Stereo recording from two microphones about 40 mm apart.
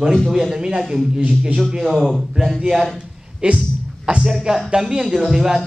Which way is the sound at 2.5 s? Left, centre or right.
Centre.